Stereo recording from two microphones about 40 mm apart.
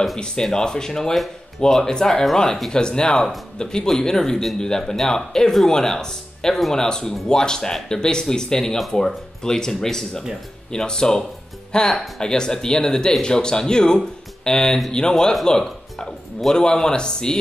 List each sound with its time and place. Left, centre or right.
0.2 s speech: centre